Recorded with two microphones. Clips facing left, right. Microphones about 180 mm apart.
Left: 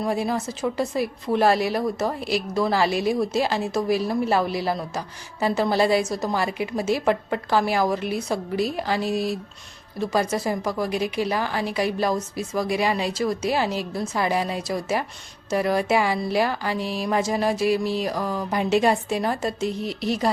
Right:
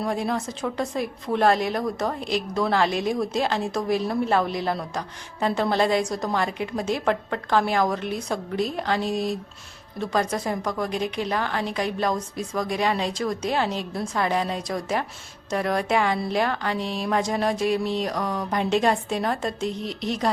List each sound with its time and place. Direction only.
0.0 s a woman's voice: 5° left (ahead or behind)